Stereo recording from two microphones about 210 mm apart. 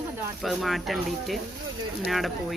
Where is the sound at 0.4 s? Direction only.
Centre (ahead or behind).